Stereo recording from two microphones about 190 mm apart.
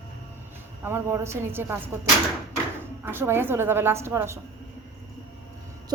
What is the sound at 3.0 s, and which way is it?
A woman's voice, 10° right (ahead or behind).